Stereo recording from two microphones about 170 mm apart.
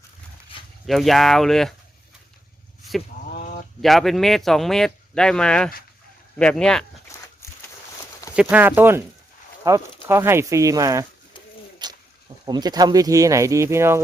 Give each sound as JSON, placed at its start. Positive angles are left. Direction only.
{"t": 0.9, "sound": "speech", "side_deg": 0}
{"t": 3.2, "sound": "a sound", "side_deg": 55}
{"t": 3.8, "sound": "speech", "side_deg": 0}
{"t": 7.1, "sound": "a sound", "side_deg": 15}
{"t": 8.4, "sound": "speech", "side_deg": -5}
{"t": 11.8, "sound": "dog", "side_deg": -25}
{"t": 12.5, "sound": "speech", "side_deg": -25}